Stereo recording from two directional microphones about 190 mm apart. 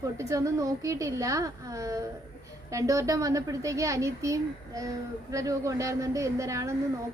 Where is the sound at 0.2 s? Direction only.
15° right (ahead or behind).